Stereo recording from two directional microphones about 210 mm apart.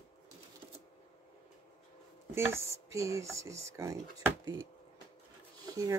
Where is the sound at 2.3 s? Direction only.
15° right (ahead or behind).